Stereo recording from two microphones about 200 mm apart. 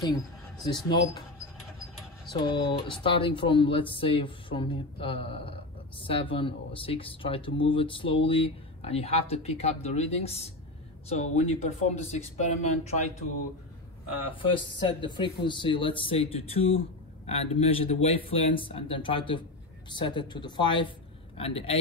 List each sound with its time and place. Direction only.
0.7 s speech: 20° left (ahead or behind)
2.5 s speech: 25° left (ahead or behind)
14.3 s speech: 25° left (ahead or behind)